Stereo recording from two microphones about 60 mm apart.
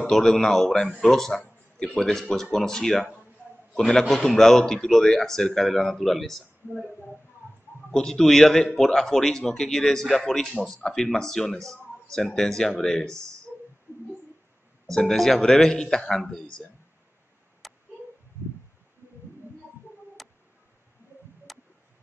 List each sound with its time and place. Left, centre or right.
0.1 s a man's voice: centre
13.1 s speech: right
15.0 s speech: centre
17.6 s a sound: centre
20.2 s cat: centre
21.5 s a sound: centre